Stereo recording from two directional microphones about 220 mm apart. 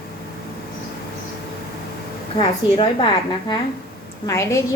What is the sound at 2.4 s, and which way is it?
Speech, 20° left (ahead or behind).